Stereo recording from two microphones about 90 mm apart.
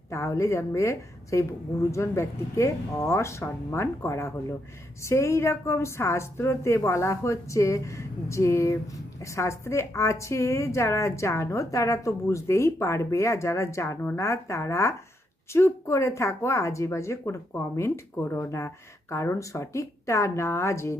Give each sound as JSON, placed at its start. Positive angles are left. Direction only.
{"t": 0.1, "sound": "a woman's voice", "side_deg": 35}